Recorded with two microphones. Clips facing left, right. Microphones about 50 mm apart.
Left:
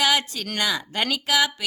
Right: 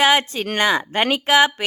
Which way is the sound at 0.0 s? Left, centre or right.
Right.